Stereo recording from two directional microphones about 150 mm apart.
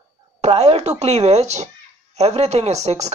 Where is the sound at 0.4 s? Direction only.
45° right (ahead or behind).